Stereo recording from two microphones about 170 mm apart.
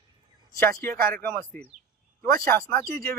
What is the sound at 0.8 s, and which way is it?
Speech, 60° right (ahead or behind).